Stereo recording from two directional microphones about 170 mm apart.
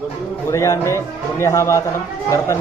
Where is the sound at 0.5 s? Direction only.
20° left (ahead or behind).